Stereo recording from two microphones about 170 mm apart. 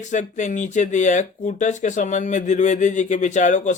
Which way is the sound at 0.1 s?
45° left (ahead or behind).